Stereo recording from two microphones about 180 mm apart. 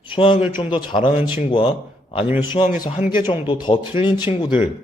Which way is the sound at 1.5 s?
30° left (ahead or behind).